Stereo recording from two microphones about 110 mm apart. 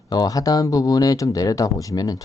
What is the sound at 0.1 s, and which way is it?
Speech, 35° left (ahead or behind).